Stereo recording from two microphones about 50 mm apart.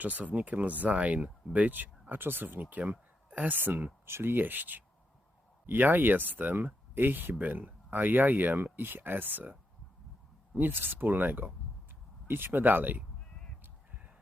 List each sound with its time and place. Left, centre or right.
0.0 s speech: right
4.0 s speech: right
12.5 s speech: right